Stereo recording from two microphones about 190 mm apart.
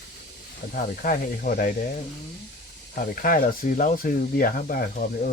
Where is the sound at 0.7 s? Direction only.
45° left (ahead or behind).